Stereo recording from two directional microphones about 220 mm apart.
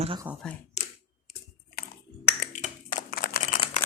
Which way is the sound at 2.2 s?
40° left (ahead or behind).